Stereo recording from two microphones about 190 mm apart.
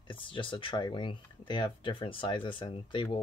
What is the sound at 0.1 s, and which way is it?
Speech, 25° left (ahead or behind).